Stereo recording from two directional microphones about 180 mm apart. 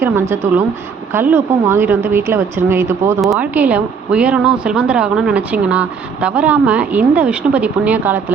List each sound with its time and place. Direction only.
0.0 s speech: 15° right (ahead or behind)